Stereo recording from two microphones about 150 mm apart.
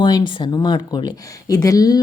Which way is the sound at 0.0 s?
30° left (ahead or behind).